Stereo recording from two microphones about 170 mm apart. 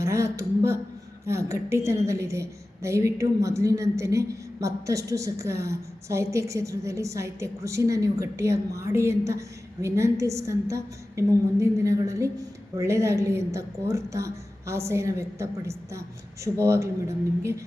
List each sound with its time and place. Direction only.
0.0 s a woman's voice: 15° right (ahead or behind)